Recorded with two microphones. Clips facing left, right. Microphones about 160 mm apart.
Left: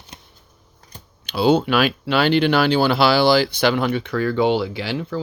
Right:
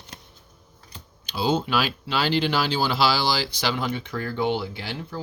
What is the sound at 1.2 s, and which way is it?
Speech, 65° left (ahead or behind).